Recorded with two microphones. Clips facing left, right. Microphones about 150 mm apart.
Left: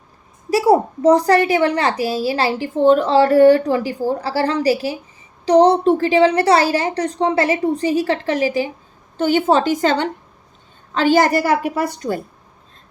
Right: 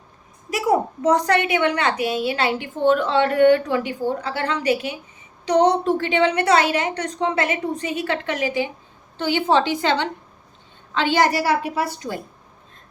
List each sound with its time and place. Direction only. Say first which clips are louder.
0.5 s a woman's voice: left 6 dB; 30° left (ahead or behind); by 12.2 s 50° left (ahead or behind)